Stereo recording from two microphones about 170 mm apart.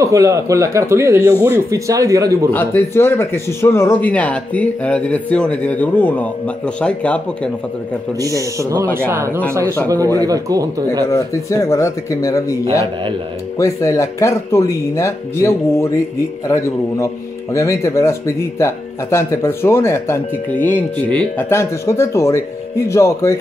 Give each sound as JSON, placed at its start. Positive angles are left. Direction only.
{"t": 0.0, "sound": "a man's voice", "side_deg": -20}
{"t": 2.5, "sound": "speech", "side_deg": 10}
{"t": 8.2, "sound": "a man's voice", "side_deg": -20}
{"t": 11.1, "sound": "speech", "side_deg": 15}